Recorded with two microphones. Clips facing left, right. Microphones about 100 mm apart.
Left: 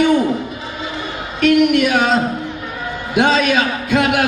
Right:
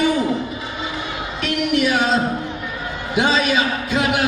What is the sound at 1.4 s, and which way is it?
Speech, 55° left (ahead or behind).